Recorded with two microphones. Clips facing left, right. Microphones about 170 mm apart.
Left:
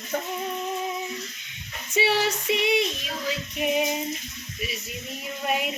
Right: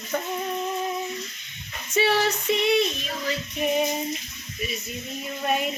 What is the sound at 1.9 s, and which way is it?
Female singing, 15° left (ahead or behind).